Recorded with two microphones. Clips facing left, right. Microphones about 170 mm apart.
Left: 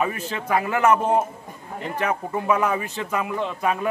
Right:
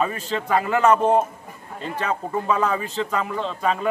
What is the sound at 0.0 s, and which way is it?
A man's voice, 10° left (ahead or behind).